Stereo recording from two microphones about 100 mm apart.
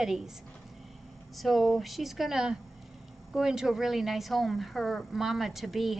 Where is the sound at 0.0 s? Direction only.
5° right (ahead or behind).